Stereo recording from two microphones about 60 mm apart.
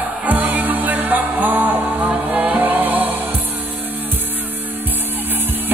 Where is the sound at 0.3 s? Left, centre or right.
Right.